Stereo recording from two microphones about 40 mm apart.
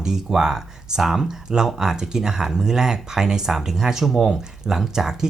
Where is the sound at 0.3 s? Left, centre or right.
Centre.